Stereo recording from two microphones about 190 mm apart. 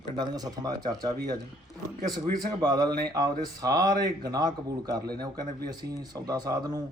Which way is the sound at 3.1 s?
20° right (ahead or behind).